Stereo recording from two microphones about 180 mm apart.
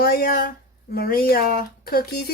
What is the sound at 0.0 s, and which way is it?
Speech, 55° left (ahead or behind).